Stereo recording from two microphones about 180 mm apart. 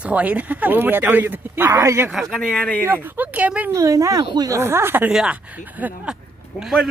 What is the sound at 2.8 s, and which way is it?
A woman's voice, 10° right (ahead or behind).